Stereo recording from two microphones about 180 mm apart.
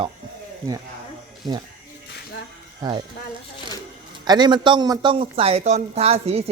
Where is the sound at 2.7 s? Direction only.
25° right (ahead or behind).